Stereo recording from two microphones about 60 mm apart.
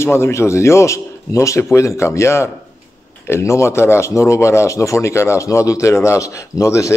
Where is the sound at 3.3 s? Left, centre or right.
Left.